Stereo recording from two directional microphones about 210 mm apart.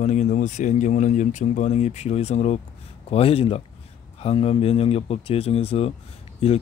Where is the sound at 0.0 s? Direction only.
35° left (ahead or behind).